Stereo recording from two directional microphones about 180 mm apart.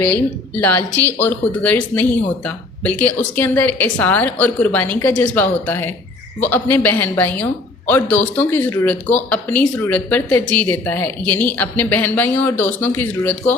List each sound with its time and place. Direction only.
0.6 s speech: 10° left (ahead or behind)